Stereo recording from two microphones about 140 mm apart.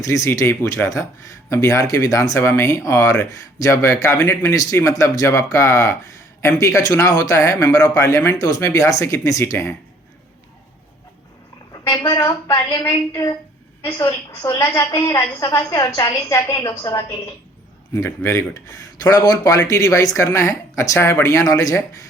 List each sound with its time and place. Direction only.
0.0 s speech: 25° left (ahead or behind)
11.7 s speech: 25° left (ahead or behind)